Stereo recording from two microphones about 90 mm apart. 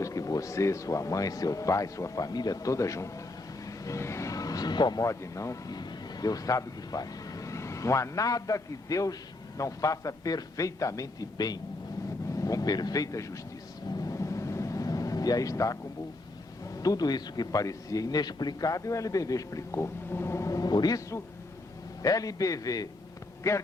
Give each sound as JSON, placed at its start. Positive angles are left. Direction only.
{"t": 0.0, "sound": "a man's voice", "side_deg": 40}
{"t": 5.0, "sound": "a man's voice", "side_deg": 35}
{"t": 13.9, "sound": "vehicle", "side_deg": 40}
{"t": 16.8, "sound": "a man's voice", "side_deg": 45}
{"t": 22.0, "sound": "a man's voice", "side_deg": 40}